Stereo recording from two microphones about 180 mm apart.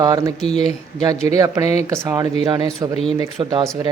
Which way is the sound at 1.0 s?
20° right (ahead or behind).